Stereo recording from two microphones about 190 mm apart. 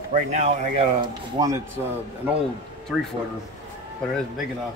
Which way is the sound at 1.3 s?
20° right (ahead or behind).